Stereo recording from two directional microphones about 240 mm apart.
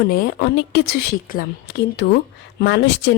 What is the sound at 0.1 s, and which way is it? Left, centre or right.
A woman's voice, left.